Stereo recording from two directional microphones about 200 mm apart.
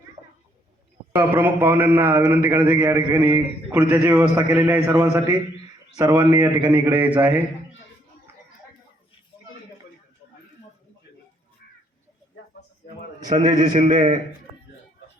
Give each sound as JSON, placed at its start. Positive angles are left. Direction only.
{"t": 1.1, "sound": "a man's voice", "side_deg": -10}
{"t": 6.3, "sound": "a man's voice", "side_deg": -5}
{"t": 13.2, "sound": "a man's voice", "side_deg": -40}